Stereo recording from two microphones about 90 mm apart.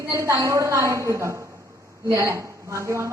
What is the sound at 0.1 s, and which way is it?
A woman's voice, 35° right (ahead or behind).